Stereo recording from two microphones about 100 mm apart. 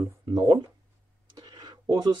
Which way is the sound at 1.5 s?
45° right (ahead or behind).